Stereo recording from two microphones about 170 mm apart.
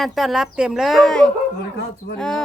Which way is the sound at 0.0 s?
Centre (ahead or behind).